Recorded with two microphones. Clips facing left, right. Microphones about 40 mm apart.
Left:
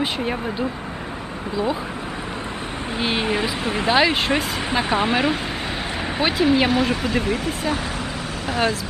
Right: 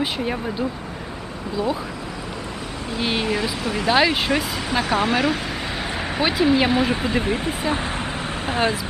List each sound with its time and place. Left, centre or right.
1.5 s speech: centre
3.0 s speech: centre
3.6 s speech: left
3.9 s speech: centre
4.7 s speech: centre
6.1 s speech: centre
6.9 s speech: right